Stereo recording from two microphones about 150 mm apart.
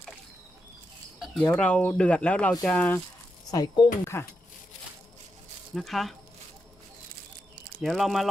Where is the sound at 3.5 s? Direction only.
25° left (ahead or behind).